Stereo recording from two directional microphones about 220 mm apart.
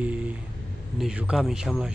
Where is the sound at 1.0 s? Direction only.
5° right (ahead or behind).